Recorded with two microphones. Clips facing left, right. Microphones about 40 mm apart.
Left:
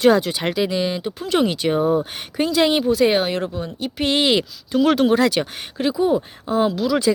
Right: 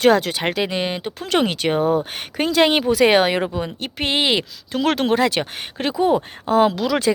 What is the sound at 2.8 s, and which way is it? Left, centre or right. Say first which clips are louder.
Speech: right 2 dB; right.